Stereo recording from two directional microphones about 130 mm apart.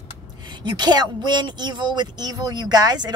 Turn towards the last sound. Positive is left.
turn(degrees=-30)  # may be behind; listen again after turning